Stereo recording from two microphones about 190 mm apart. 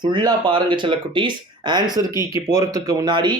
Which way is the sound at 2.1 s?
25° left (ahead or behind).